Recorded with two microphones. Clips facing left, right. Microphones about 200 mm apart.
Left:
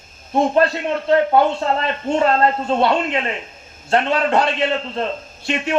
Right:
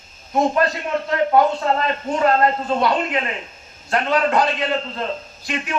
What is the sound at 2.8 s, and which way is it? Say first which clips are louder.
A man's voice: left 3 dB; 30° left (ahead or behind).